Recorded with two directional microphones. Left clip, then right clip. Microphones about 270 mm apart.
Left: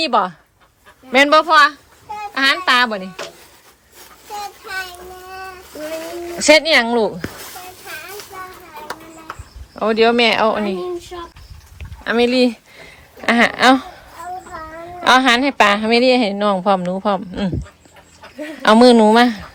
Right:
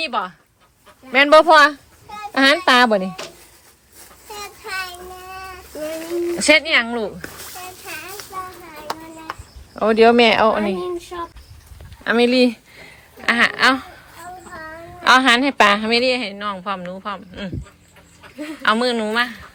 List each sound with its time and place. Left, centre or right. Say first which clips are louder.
0.0 s speech: left 7 dB; left
1.1 s speech: right 1 dB; centre
6.2 s a woman's voice: left 3 dB; centre
9.7 s speech: right 1 dB; centre
12.0 s a sound: even; centre
15.0 s a woman's voice: left 1 dB; centre
18.6 s a woman's voice: left 9 dB; centre